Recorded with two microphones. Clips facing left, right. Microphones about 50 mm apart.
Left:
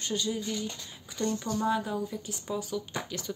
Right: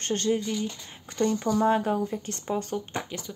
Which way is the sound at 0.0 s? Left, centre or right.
Right.